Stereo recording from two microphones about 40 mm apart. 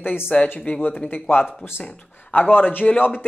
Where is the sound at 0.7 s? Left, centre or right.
Left.